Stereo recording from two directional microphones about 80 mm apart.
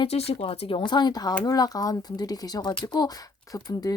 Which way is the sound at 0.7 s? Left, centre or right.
Left.